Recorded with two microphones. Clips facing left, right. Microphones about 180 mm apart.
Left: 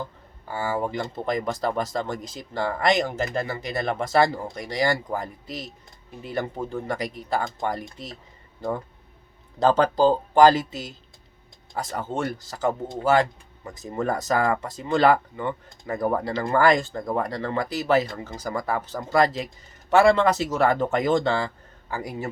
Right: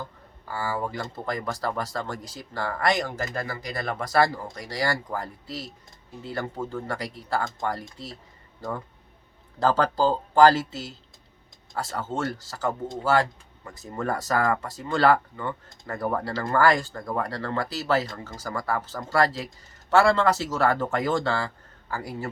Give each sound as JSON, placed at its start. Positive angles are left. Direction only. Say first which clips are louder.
{"t": 0.4, "sound": "speech", "louder": "left 3 dB", "side_deg": 20}
{"t": 9.6, "sound": "speech", "louder": "left 3 dB", "side_deg": 20}